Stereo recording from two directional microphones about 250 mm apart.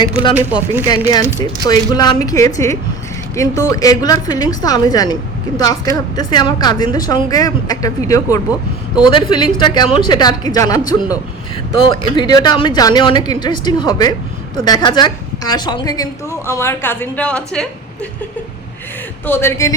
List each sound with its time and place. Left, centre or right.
0.9 s a woman's voice: centre
19.2 s a woman's voice: centre